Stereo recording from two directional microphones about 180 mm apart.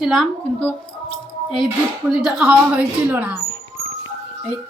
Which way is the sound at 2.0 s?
5° right (ahead or behind).